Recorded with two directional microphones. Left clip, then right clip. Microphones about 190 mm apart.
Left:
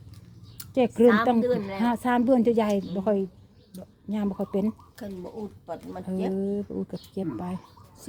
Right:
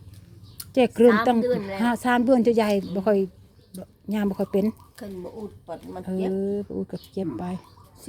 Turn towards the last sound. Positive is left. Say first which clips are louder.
# right 2 dB
turn(degrees=-15)  # may be behind; listen again after turning